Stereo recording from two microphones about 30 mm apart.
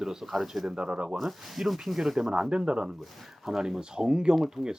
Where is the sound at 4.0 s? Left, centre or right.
Right.